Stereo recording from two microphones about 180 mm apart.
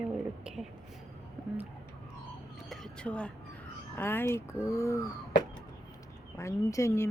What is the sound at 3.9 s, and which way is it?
Speech, 10° left (ahead or behind).